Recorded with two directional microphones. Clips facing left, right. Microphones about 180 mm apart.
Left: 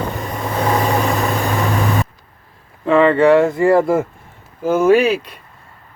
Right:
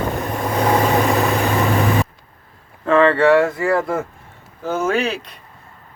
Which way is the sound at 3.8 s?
25° left (ahead or behind).